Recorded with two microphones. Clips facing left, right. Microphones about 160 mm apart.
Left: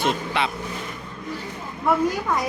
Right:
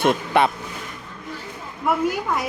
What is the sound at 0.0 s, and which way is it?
Speech, 55° right (ahead or behind).